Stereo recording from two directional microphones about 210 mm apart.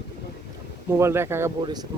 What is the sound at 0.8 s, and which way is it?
Speech, 10° right (ahead or behind).